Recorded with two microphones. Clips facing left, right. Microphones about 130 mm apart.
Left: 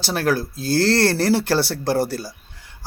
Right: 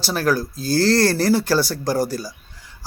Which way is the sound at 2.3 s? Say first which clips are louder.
Right 1 dB; 60° left (ahead or behind).